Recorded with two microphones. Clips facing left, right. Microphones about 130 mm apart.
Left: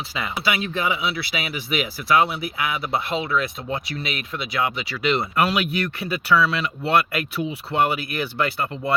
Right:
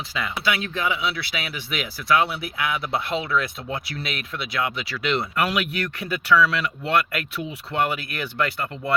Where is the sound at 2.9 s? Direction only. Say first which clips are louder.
Left 1 dB; centre (ahead or behind).